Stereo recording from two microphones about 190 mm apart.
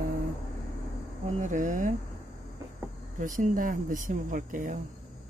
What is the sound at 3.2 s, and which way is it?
Speech, 45° right (ahead or behind).